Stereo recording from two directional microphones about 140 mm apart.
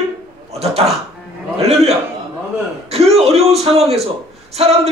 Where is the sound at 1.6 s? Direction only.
50° right (ahead or behind).